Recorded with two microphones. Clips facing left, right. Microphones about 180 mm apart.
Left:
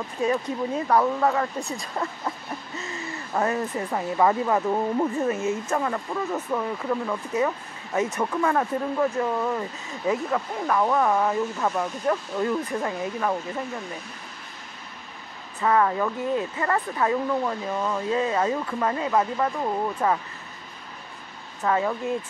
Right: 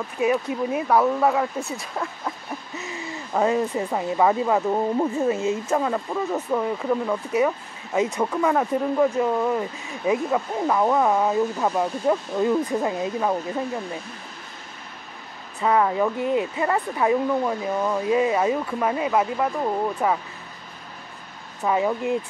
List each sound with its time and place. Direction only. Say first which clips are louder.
0.2 s speech: right 3 dB; 10° right (ahead or behind)
2.8 s speech: right 1 dB; 15° right (ahead or behind)
15.6 s speech: right 2 dB; 15° right (ahead or behind)
21.6 s speech: right 2 dB; 15° right (ahead or behind)